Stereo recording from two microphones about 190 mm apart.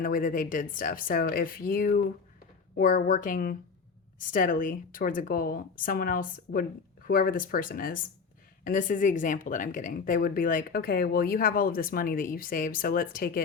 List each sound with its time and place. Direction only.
0.0 s speech: 45° left (ahead or behind)